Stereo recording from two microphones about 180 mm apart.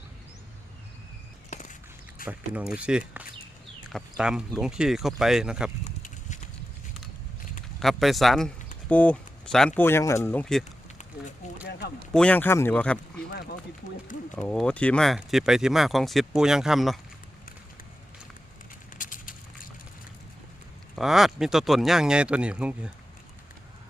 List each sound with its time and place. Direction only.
1.5 s a sound: 40° left (ahead or behind)
2.2 s speech: 10° right (ahead or behind)
5.8 s a sound: 40° left (ahead or behind)
7.8 s speech: centre (ahead or behind)
12.1 s speech: 5° left (ahead or behind)
13.3 s speech: 60° left (ahead or behind)
14.4 s speech: 5° left (ahead or behind)
18.9 s a sound: 45° left (ahead or behind)
20.9 s speech: centre (ahead or behind)